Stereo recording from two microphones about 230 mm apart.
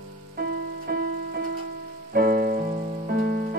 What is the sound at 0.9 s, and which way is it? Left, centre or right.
Music, right.